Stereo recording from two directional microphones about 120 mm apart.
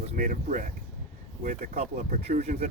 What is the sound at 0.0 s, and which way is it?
Speech, 90° right.